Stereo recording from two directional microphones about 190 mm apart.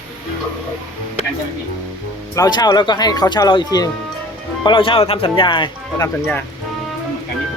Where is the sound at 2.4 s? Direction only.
20° left (ahead or behind).